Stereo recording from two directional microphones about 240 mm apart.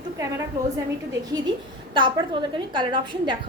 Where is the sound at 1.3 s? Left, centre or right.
Centre.